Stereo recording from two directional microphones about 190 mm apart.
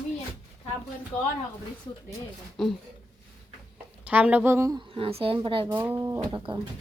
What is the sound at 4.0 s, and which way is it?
A woman's voice, 10° right (ahead or behind).